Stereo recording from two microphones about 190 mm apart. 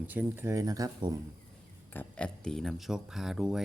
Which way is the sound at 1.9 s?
5° left (ahead or behind).